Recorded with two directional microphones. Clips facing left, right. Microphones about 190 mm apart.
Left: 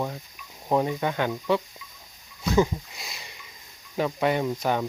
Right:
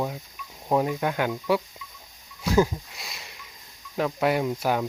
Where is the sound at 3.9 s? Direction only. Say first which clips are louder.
Even; centre (ahead or behind).